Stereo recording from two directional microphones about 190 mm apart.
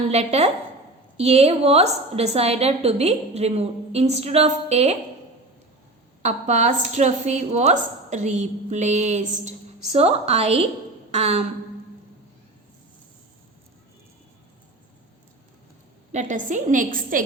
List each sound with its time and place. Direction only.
0.1 s a woman's voice: 35° right (ahead or behind)
6.2 s a woman's voice: 40° right (ahead or behind)
16.1 s a woman's voice: 40° right (ahead or behind)